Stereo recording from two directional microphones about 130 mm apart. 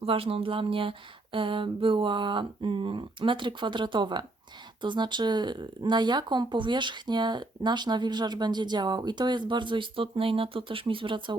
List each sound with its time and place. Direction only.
0.0 s speech: 45° right (ahead or behind)